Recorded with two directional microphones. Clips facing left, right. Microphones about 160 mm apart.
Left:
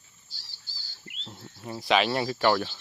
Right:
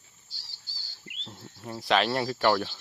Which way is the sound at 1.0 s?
15° right (ahead or behind).